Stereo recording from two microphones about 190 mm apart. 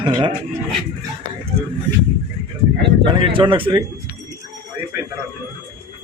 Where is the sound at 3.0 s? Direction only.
25° right (ahead or behind).